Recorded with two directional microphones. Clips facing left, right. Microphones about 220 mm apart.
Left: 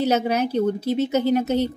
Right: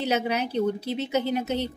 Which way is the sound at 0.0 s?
40° left (ahead or behind).